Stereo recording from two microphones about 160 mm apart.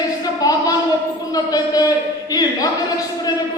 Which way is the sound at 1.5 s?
25° left (ahead or behind).